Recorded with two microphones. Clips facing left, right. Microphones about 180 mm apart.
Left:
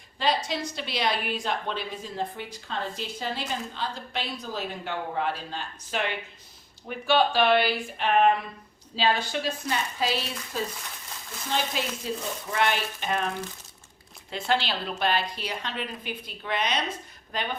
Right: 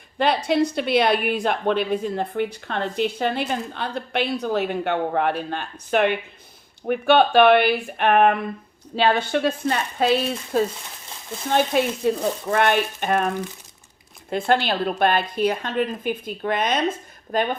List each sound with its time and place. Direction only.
0.2 s a woman's voice: 60° right (ahead or behind)